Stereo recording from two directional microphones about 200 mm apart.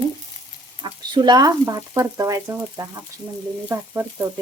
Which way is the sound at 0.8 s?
20° right (ahead or behind).